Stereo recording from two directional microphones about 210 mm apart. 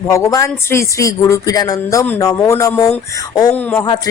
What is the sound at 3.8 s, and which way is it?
Speech, 20° left (ahead or behind).